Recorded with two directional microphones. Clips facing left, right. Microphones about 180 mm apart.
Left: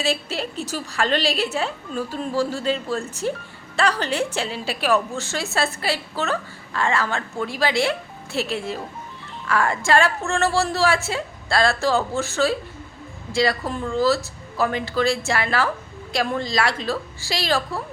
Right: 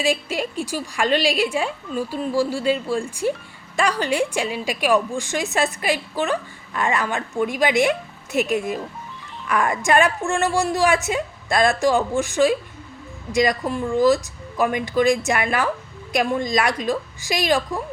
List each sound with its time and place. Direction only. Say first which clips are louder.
0.0 s a woman's voice: right 2 dB; 15° right (ahead or behind)